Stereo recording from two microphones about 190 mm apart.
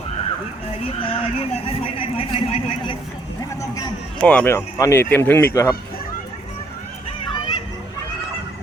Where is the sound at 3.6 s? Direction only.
20° left (ahead or behind).